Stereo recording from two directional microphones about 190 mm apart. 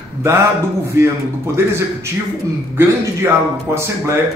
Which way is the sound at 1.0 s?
15° right (ahead or behind).